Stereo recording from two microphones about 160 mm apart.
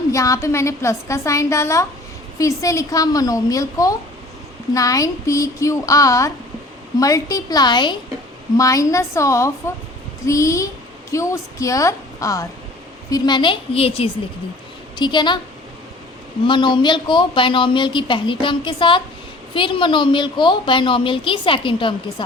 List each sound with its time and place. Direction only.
0.1 s a woman's voice: 20° left (ahead or behind)
16.5 s speech: 30° left (ahead or behind)